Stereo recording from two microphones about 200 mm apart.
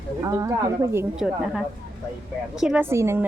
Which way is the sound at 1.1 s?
5° right (ahead or behind).